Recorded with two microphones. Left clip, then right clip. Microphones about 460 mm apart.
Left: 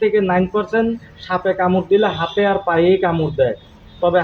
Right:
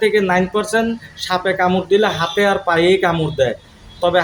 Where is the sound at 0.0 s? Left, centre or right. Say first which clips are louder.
Right 1 dB; left.